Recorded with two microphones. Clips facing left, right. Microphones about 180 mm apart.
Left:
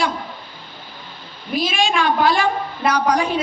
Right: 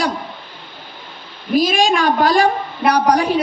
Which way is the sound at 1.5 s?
40° right (ahead or behind).